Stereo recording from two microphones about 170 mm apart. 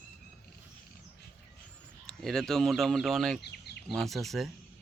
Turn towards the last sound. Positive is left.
turn(degrees=0)  # may be behind; listen again after turning